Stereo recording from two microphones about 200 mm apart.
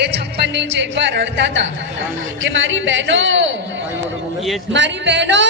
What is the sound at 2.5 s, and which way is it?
A man's voice, 70° right (ahead or behind).